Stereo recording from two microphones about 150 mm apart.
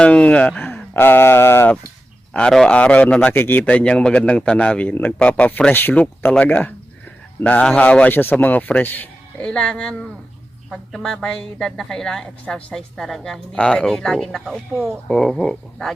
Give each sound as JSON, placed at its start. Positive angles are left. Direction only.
{"t": 0.0, "sound": "a man's voice", "side_deg": 10}